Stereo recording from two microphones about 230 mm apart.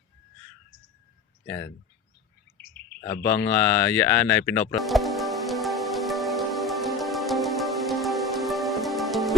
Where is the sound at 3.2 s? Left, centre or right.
Centre.